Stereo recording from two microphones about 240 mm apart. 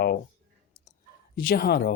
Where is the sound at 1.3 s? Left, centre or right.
Left.